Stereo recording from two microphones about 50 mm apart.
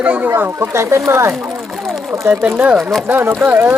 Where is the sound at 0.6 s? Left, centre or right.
Right.